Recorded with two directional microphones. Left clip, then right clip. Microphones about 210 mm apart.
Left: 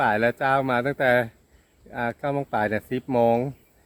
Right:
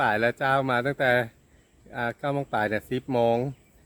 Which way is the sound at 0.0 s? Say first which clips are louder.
Left 2 dB; 5° right (ahead or behind).